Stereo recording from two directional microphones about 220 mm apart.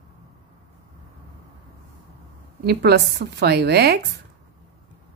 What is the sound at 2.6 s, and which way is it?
A woman's voice, 50° right (ahead or behind).